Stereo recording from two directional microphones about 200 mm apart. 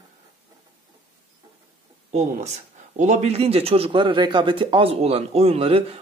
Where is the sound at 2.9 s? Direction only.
35° right (ahead or behind).